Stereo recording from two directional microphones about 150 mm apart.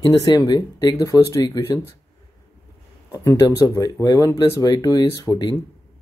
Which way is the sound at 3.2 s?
20° left (ahead or behind).